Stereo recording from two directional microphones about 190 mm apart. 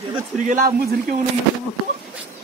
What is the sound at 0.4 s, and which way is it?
Speech, 45° right (ahead or behind).